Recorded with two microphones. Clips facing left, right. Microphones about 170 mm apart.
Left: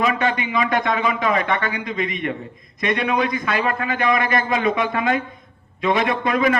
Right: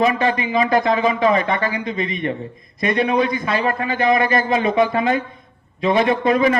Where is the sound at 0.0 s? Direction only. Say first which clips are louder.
Right 3 dB; 30° right (ahead or behind).